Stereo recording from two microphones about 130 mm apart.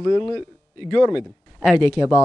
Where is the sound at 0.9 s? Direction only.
Centre (ahead or behind).